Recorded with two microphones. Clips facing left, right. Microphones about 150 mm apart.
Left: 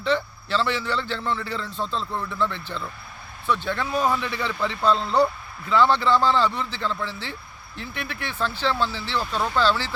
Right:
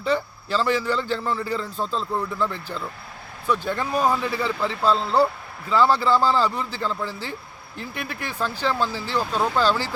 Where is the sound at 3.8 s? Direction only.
10° right (ahead or behind).